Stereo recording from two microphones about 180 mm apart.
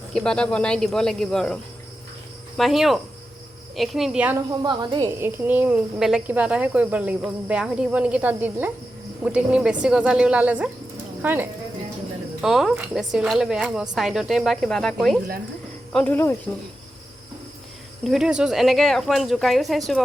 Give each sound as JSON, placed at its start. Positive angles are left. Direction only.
{"t": 0.1, "sound": "speech", "side_deg": 5}
{"t": 2.6, "sound": "speech", "side_deg": 0}
{"t": 4.5, "sound": "speech", "side_deg": -25}
{"t": 5.2, "sound": "speech", "side_deg": -10}
{"t": 18.0, "sound": "speech", "side_deg": 0}